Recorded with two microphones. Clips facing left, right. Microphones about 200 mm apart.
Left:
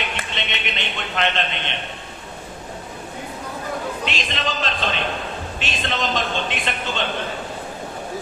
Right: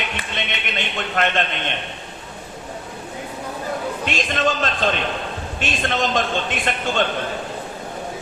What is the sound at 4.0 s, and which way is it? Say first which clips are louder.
A man's voice: right 5 dB; 50° right (ahead or behind).